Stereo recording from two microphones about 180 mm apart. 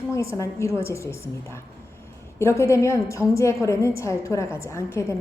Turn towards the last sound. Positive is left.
turn(degrees=15)  # may be behind; listen again after turning